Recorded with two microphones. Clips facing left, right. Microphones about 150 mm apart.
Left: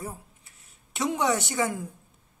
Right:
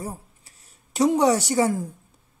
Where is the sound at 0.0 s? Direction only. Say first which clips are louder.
Right 4 dB; 35° right (ahead or behind).